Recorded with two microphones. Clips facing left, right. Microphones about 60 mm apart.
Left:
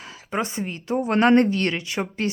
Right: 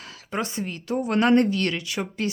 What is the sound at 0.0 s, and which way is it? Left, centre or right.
A woman's voice, left.